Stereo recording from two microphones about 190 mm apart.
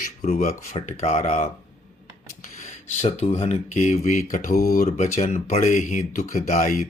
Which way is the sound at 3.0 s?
35° left (ahead or behind).